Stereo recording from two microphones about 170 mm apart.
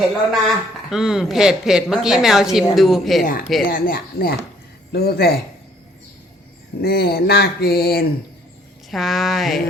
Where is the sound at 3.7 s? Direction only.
55° left (ahead or behind).